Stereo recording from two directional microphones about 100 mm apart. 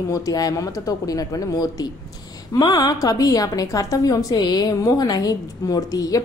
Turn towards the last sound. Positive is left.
turn(degrees=35)  # may be behind; listen again after turning